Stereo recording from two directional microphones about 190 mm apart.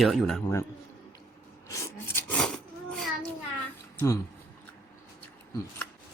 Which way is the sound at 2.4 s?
Centre (ahead or behind).